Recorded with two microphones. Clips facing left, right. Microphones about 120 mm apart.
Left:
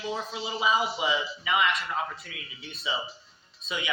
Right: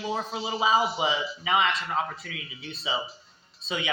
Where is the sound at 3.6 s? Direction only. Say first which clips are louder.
Right 3 dB; 30° right (ahead or behind).